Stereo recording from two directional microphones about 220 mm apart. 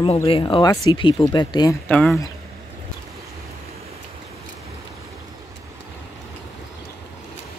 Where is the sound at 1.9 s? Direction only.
5° left (ahead or behind).